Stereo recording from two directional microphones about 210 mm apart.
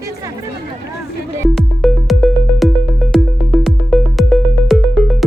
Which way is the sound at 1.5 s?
Centre (ahead or behind).